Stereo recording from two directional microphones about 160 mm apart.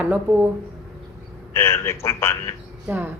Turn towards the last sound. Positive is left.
turn(degrees=-15)  # may be behind; listen again after turning